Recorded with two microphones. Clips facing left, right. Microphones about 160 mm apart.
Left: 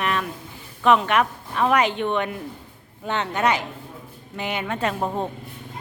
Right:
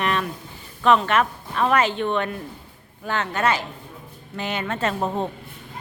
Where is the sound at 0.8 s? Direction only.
15° left (ahead or behind).